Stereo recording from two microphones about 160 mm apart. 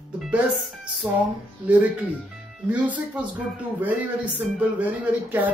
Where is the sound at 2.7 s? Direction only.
10° right (ahead or behind).